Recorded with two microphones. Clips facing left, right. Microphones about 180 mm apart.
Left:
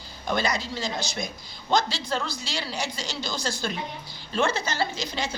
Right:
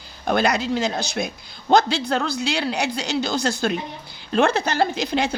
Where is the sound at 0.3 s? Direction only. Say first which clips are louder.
Right 7 dB; 60° right (ahead or behind).